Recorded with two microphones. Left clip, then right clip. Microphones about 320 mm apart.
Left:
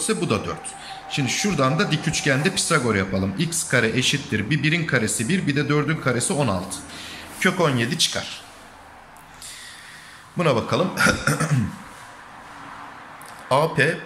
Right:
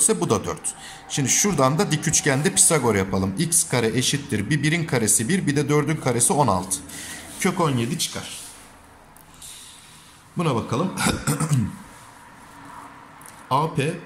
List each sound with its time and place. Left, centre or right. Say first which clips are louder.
0.0 s speech: right 2 dB; centre
10.3 s speech: left 4 dB; centre
13.5 s speech: left 4 dB; centre